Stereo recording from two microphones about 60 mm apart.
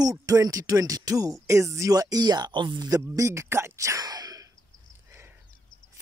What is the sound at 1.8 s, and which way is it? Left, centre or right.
Speech, right.